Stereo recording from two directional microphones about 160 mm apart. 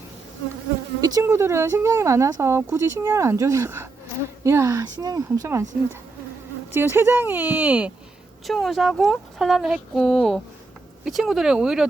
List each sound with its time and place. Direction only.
1.0 s speech: 20° right (ahead or behind)
6.7 s speech: 15° right (ahead or behind)